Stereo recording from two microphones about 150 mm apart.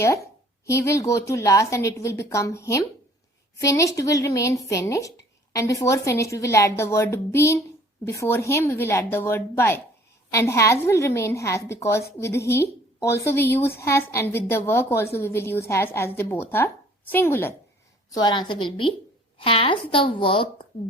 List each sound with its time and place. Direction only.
0.0 s a woman's voice: 20° left (ahead or behind)
18.1 s a woman's voice: 30° left (ahead or behind)